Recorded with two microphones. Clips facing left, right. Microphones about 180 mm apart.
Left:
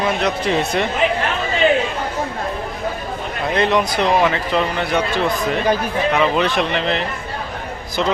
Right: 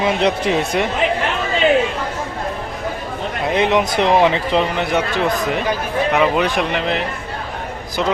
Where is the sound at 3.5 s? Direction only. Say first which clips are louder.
Right 1 dB; 20° right (ahead or behind).